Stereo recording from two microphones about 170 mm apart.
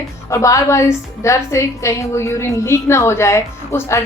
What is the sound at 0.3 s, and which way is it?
A woman's voice, 20° left (ahead or behind).